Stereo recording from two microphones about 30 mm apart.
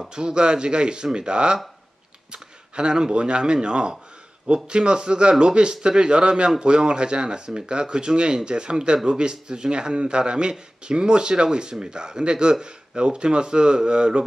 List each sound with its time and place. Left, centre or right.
0.1 s speech: right
2.3 s a sound: right
3.1 s speech: right